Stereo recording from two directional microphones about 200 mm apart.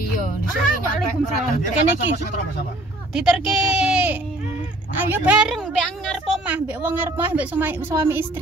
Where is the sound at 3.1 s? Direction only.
Centre (ahead or behind).